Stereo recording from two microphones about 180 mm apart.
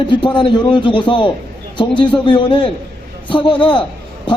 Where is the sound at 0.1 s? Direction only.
25° left (ahead or behind).